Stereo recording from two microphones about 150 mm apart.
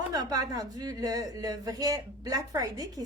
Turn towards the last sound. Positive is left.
turn(degrees=-25)  # may be behind; listen again after turning